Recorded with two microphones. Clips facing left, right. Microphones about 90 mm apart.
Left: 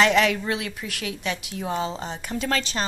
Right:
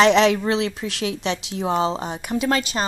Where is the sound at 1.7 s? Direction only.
70° right (ahead or behind).